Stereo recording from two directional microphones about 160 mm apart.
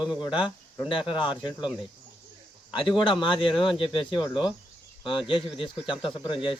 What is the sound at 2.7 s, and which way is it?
Speech, 30° left (ahead or behind).